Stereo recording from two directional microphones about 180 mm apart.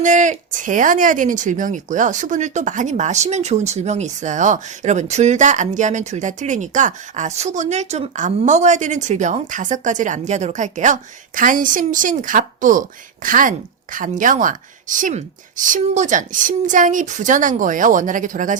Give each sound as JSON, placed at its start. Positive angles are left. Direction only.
{"t": 0.0, "sound": "speech", "side_deg": -45}